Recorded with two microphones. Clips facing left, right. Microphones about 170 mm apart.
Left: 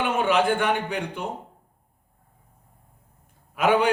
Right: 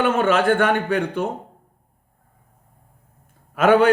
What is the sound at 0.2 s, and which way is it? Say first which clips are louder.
A man's voice: right 4 dB; 60° right (ahead or behind).